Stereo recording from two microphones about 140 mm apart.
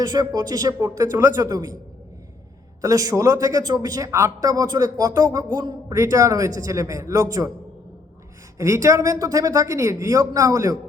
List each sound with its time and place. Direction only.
0.0 s a man's voice: 30° right (ahead or behind)
2.8 s a man's voice: 25° right (ahead or behind)
8.5 s a man's voice: 20° right (ahead or behind)